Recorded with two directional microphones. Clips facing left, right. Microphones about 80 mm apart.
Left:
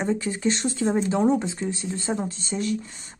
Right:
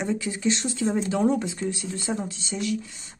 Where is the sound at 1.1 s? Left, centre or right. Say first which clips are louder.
Left 2 dB; left.